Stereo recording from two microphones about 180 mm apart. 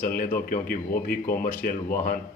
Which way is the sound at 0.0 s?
50° left (ahead or behind).